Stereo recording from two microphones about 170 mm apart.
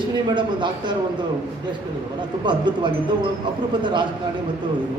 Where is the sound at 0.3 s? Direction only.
25° right (ahead or behind).